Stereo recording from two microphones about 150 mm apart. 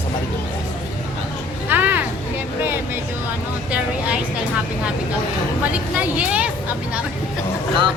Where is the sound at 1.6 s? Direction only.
10° right (ahead or behind).